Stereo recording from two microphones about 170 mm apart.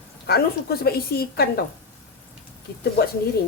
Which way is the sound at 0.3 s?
65° left (ahead or behind).